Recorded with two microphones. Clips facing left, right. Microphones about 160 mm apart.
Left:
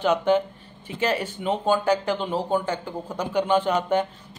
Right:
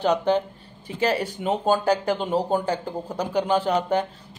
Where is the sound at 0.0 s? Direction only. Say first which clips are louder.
Left 1 dB; 35° right (ahead or behind).